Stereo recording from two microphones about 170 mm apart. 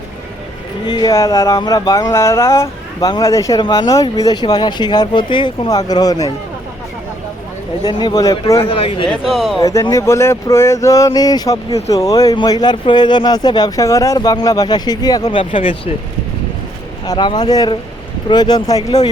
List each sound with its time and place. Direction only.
0.9 s speech: 25° left (ahead or behind)
7.9 s speech: 25° left (ahead or behind)
8.7 s speech: 35° left (ahead or behind)
9.0 s speech: centre (ahead or behind)
9.6 s speech: 20° left (ahead or behind)
17.1 s speech: 25° left (ahead or behind)